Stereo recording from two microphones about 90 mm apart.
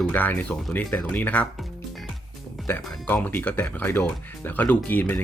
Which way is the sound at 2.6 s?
Centre (ahead or behind).